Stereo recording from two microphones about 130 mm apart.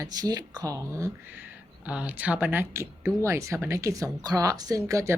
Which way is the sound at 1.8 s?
10° right (ahead or behind).